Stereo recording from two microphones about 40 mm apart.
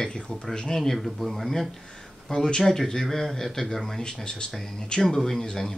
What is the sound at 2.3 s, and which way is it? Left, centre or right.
Speech, centre.